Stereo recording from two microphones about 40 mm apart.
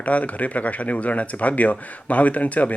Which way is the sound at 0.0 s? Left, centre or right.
Left.